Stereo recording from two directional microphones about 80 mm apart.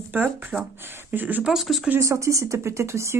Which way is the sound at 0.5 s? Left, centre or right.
Centre.